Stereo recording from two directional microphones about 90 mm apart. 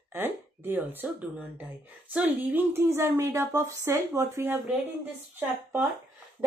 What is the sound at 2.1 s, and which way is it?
Speech, 25° right (ahead or behind).